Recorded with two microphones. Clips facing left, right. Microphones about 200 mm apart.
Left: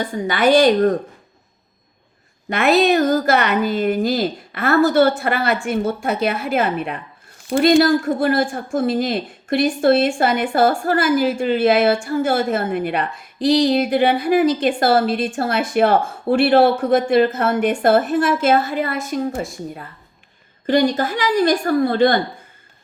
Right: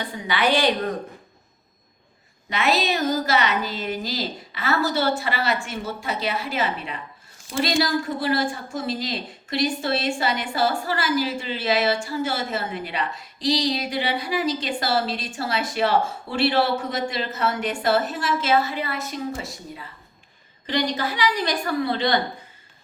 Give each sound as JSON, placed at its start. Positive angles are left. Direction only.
{"t": 0.0, "sound": "a woman's voice", "side_deg": 45}
{"t": 2.5, "sound": "a woman's voice", "side_deg": 55}